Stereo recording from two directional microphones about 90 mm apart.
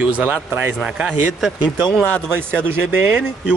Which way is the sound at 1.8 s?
10° left (ahead or behind).